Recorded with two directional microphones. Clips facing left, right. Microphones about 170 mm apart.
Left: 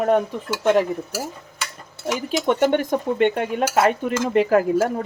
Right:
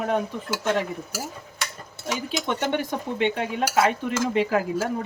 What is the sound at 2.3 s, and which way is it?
Stir, 45° left (ahead or behind).